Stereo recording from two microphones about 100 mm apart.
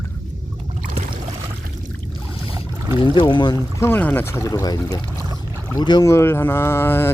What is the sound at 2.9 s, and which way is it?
Speech, 60° left (ahead or behind).